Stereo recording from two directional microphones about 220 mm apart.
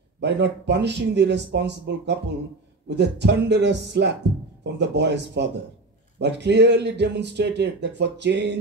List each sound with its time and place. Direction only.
0.2 s speech: 50° right (ahead or behind)